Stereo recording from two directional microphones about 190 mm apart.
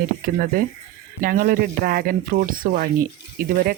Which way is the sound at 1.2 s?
50° right (ahead or behind).